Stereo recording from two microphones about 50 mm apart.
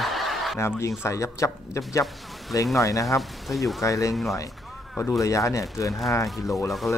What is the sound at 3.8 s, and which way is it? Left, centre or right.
Speech, left.